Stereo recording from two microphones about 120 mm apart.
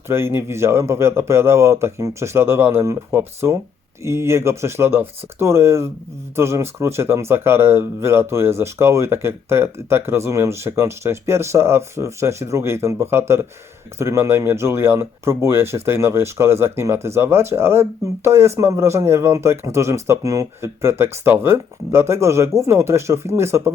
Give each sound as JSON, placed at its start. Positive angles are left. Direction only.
{"t": 0.1, "sound": "speech", "side_deg": -20}